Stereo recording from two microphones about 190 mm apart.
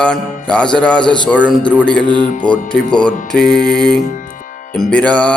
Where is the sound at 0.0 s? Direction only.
5° left (ahead or behind).